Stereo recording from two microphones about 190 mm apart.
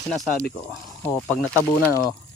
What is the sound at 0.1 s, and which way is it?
Speech, centre (ahead or behind).